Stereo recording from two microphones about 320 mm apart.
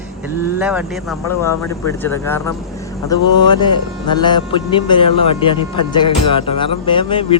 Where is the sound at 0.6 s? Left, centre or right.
Centre.